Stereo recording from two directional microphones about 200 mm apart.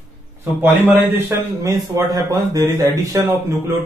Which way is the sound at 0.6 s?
10° right (ahead or behind).